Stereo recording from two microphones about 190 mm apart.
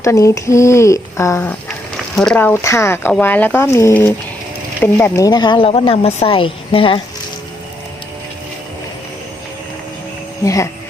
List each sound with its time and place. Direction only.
0.0 s speech: 15° left (ahead or behind)
10.4 s speech: 15° left (ahead or behind)